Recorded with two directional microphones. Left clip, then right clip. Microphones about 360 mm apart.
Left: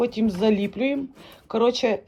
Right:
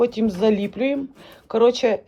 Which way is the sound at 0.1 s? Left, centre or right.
Centre.